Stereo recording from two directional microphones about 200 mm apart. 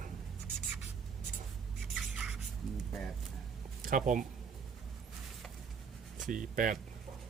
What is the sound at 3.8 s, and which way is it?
Speech, 45° right (ahead or behind).